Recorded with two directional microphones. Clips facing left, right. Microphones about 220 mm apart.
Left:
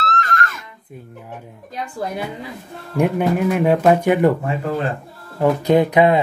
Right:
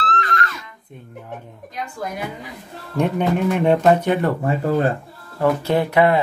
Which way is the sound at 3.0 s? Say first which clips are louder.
Left 2 dB; 5° left (ahead or behind).